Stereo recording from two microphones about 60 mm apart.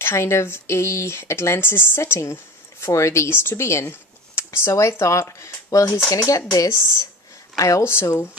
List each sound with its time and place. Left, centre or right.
0.0 s speech: left
5.4 s a sound: left
6.1 s speech: left
7.8 s speech: left